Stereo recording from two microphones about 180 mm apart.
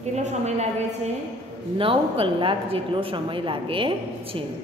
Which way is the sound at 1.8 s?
30° right (ahead or behind).